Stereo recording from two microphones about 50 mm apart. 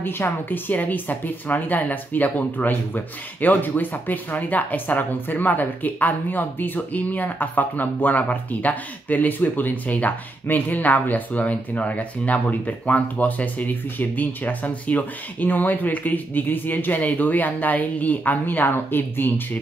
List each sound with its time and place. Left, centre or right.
0.0 s speech: left